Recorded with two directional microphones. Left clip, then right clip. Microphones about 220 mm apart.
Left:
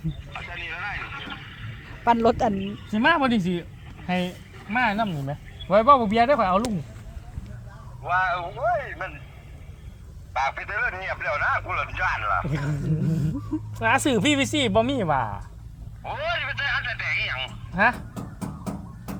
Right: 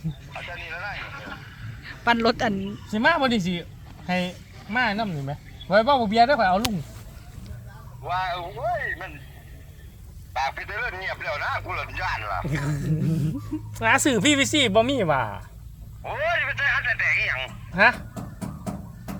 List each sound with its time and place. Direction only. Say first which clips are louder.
0.3 s a sound: left 1 dB; 10° left (ahead or behind)
2.0 s speech: left 1 dB; 10° left (ahead or behind)
8.1 s speech: left 4 dB; 5° right (ahead or behind)
10.3 s speech: left 2 dB; centre (ahead or behind)
13.1 s speech: right 1 dB; 5° left (ahead or behind)
13.7 s speech: right 1 dB; 5° right (ahead or behind)
16.0 s telephone: right 3 dB; 15° right (ahead or behind)